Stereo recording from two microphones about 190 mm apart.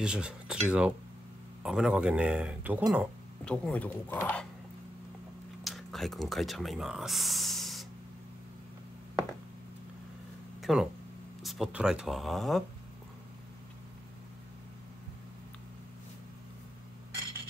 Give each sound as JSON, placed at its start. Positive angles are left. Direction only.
{"t": 0.0, "sound": "speech", "side_deg": -5}
{"t": 3.4, "sound": "speech", "side_deg": 5}
{"t": 5.6, "sound": "speech", "side_deg": 0}
{"t": 10.6, "sound": "a sound", "side_deg": 0}
{"t": 11.4, "sound": "speech", "side_deg": 0}